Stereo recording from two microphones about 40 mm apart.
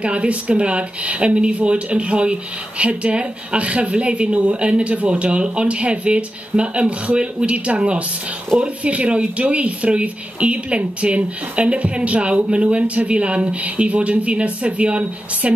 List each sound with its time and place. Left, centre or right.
0.0 s speech: right